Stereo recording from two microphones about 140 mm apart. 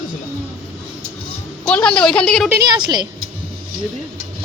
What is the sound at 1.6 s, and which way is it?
Speech, 5° left (ahead or behind).